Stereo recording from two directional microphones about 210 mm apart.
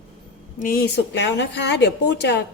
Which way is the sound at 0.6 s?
45° left (ahead or behind).